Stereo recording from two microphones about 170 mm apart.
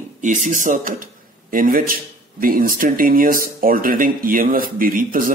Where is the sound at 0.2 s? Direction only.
50° right (ahead or behind).